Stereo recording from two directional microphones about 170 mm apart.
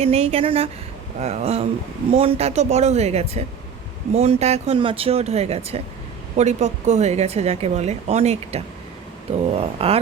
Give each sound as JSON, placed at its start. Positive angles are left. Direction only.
{"t": 0.0, "sound": "a woman's voice", "side_deg": -35}